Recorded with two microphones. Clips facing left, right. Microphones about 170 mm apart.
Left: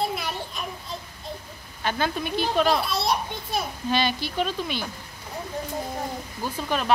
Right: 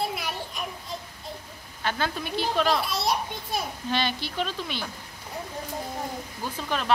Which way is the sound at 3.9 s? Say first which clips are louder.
Left 4 dB; 10° left (ahead or behind).